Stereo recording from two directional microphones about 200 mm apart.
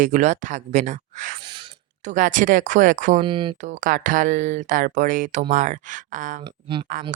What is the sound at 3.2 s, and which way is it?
Speech, 25° right (ahead or behind).